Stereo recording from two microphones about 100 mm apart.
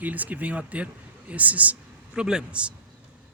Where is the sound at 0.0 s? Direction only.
15° right (ahead or behind).